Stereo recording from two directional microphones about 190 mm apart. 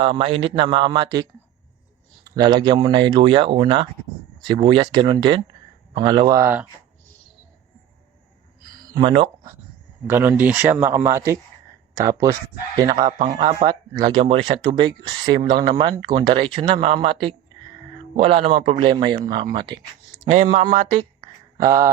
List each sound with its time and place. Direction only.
0.0 s speech: 30° right (ahead or behind)
2.3 s speech: 20° right (ahead or behind)
8.9 s speech: 25° right (ahead or behind)
10.1 s speech: 10° right (ahead or behind)
20.3 s speech: 40° right (ahead or behind)
21.6 s speech: 20° right (ahead or behind)